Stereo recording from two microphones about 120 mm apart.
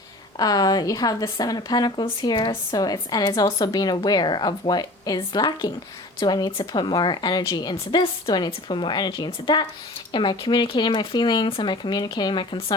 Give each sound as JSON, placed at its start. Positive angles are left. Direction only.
{"t": 0.3, "sound": "a woman's voice", "side_deg": 30}